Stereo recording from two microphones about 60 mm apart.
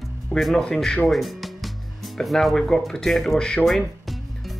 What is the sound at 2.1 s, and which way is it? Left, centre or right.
Speech, centre.